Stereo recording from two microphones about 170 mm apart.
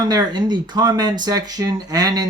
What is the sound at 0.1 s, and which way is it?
Speech, 25° right (ahead or behind).